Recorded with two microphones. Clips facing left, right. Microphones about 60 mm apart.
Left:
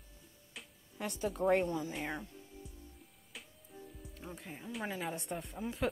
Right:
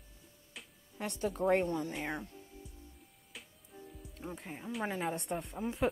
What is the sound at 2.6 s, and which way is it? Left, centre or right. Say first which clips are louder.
Music: left 1 dB; centre.